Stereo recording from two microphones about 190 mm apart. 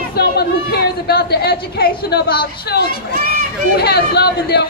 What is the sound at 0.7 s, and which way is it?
A woman's voice, 55° left (ahead or behind).